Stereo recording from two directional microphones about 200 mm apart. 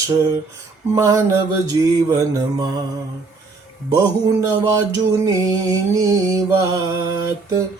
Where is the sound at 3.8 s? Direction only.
20° right (ahead or behind).